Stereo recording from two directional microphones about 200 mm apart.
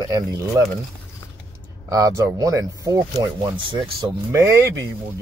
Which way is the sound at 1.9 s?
15° right (ahead or behind).